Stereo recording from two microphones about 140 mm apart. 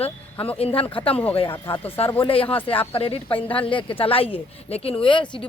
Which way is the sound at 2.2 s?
40° left (ahead or behind).